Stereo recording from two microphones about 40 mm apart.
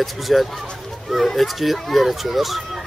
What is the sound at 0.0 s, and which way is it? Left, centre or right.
Speech, centre.